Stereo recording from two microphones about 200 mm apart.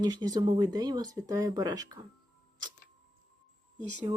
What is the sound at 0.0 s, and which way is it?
Speech, 20° right (ahead or behind).